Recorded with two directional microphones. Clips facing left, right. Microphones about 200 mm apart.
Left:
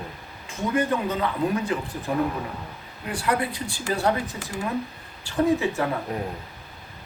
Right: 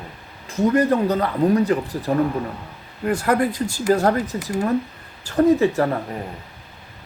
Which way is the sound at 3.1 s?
45° right (ahead or behind).